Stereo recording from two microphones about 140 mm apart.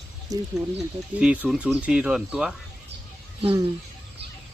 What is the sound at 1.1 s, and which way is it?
Speech, 10° right (ahead or behind).